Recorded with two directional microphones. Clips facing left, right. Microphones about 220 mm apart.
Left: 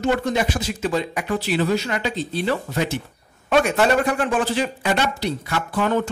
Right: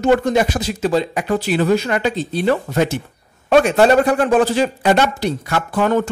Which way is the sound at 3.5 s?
35° right (ahead or behind).